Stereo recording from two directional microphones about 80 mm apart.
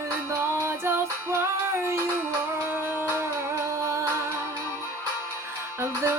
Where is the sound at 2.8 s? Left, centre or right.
Right.